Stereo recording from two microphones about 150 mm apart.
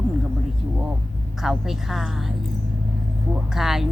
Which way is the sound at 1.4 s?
Centre (ahead or behind).